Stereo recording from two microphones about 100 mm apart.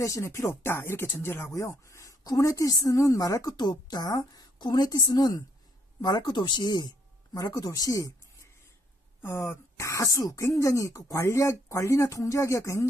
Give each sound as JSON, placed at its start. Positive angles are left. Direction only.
{"t": 0.0, "sound": "speech", "side_deg": 30}